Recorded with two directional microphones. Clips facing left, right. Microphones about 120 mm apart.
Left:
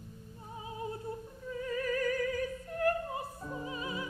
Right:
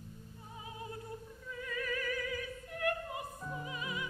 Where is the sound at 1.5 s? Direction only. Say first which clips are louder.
Left 6 dB; 35° left (ahead or behind).